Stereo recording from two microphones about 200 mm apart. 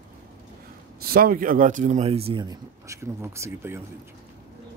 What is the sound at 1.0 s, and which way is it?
Speech, 45° right (ahead or behind).